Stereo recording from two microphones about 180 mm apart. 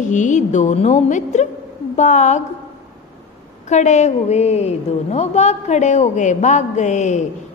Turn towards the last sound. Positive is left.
turn(degrees=40)  # may be behind; listen again after turning